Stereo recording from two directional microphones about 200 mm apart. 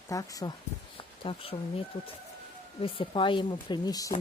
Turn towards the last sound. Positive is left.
turn(degrees=20)  # may be behind; listen again after turning